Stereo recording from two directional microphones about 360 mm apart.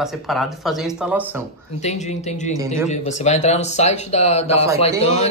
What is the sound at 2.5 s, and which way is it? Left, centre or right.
Speech, centre.